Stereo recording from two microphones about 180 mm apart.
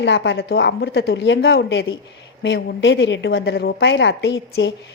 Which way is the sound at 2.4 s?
90° left.